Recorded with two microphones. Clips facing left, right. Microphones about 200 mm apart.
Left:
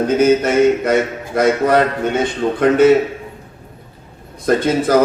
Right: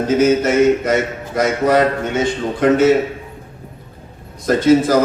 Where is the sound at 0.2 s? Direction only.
60° left (ahead or behind).